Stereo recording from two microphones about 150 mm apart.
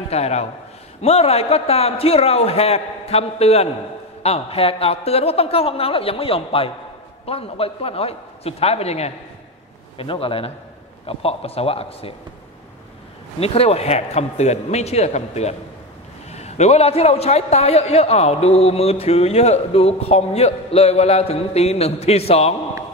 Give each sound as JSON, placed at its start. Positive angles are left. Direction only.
{"t": 0.1, "sound": "a man's voice", "side_deg": 45}
{"t": 13.4, "sound": "a man's voice", "side_deg": 40}